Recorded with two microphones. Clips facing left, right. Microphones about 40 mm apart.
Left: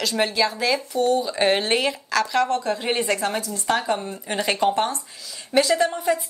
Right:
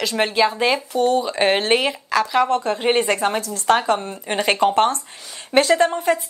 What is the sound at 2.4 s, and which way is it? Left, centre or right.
A woman's voice, right.